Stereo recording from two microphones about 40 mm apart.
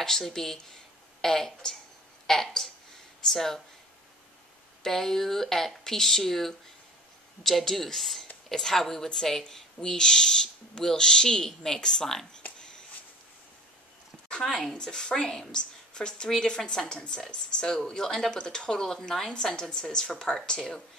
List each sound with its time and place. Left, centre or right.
0.0 s speech: centre
4.8 s speech: centre
14.4 s speech: centre
14.7 s a woman's voice: centre